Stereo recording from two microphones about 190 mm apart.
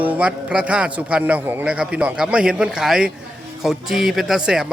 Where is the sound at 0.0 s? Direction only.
5° right (ahead or behind).